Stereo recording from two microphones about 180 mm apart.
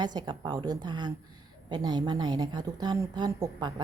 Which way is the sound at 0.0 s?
25° right (ahead or behind).